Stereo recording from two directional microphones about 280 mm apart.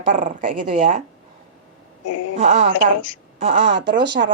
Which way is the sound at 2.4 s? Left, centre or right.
Right.